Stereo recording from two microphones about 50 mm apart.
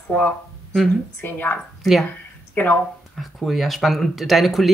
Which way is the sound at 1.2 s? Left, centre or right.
Left.